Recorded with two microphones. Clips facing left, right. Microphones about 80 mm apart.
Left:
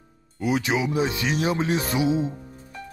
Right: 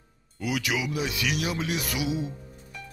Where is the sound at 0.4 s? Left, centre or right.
Left.